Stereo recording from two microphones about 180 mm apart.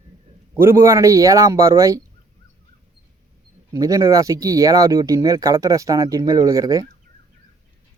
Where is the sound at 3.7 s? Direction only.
20° right (ahead or behind).